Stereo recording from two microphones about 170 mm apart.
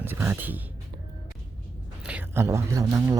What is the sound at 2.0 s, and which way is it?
Speech, 10° right (ahead or behind).